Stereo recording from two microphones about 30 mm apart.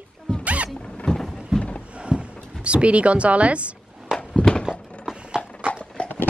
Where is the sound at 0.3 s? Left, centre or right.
Left.